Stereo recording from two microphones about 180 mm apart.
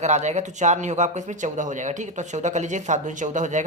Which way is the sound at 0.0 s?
40° right (ahead or behind).